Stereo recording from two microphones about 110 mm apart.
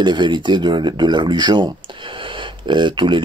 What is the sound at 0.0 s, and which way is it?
Speech, 45° right (ahead or behind).